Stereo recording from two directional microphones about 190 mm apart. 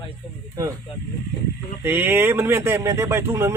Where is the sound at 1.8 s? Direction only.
10° right (ahead or behind).